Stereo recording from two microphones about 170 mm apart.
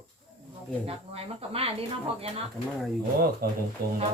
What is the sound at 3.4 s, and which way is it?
Speech, 60° right (ahead or behind).